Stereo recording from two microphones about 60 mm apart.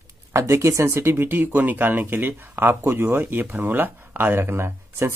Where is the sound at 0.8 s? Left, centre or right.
Right.